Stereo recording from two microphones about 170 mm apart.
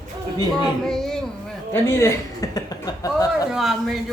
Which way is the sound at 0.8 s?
5° left (ahead or behind).